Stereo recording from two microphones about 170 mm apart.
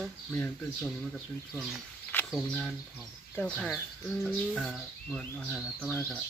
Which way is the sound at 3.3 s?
5° left (ahead or behind).